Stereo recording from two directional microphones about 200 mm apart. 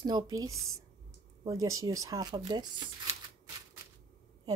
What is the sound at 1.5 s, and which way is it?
Speech, 90° right.